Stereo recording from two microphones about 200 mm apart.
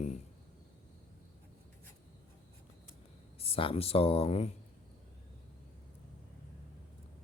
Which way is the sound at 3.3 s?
30° left (ahead or behind).